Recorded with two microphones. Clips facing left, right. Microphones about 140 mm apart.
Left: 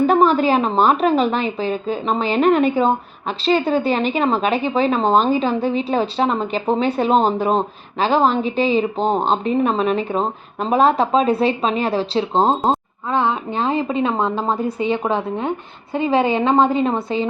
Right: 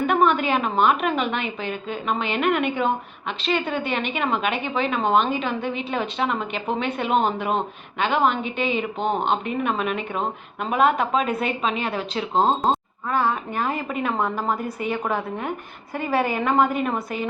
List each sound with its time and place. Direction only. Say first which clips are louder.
0.0 s a woman's voice: left 5 dB; 35° left (ahead or behind)
13.1 s a woman's voice: left 3 dB; 20° left (ahead or behind)